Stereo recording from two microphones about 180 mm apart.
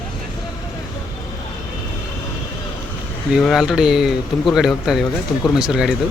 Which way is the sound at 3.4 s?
Centre (ahead or behind).